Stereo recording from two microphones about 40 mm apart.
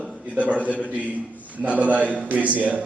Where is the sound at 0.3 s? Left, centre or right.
Right.